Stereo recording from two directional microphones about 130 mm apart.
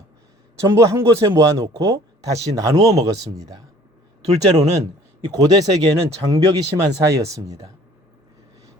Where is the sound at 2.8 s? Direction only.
55° right (ahead or behind).